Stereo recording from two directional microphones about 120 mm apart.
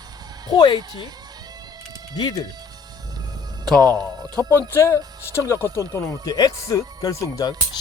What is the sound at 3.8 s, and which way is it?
Speech, 30° right (ahead or behind).